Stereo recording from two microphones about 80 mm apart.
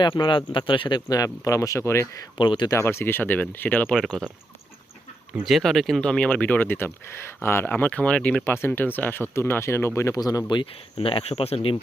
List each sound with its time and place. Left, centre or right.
0.0 s speech: left
1.1 s speech: left
2.4 s speech: left
2.6 s speech: left; by 3.9 s centre
3.9 s speech: centre
5.4 s speech: centre
8.4 s speech: left
10.2 s speech: left